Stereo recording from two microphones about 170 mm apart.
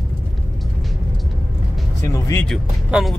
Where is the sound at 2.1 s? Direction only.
20° left (ahead or behind).